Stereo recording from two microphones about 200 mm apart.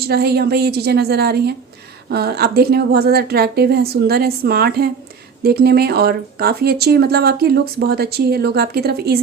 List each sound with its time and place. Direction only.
0.0 s speech: 50° right (ahead or behind)